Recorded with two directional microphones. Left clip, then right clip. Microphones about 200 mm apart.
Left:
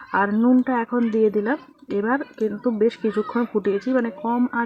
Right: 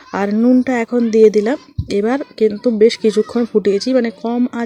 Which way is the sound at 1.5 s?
20° right (ahead or behind).